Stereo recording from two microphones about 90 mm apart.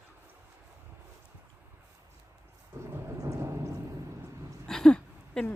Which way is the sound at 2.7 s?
35° right (ahead or behind).